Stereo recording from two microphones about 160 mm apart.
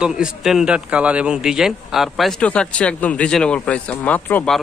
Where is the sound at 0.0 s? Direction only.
5° right (ahead or behind).